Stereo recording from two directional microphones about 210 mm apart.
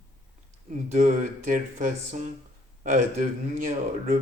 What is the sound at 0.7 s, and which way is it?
Speech, 35° right (ahead or behind).